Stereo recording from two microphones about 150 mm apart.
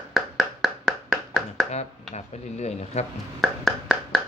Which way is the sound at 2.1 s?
45° left (ahead or behind).